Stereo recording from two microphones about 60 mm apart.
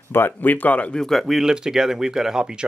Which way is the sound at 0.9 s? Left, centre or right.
Centre.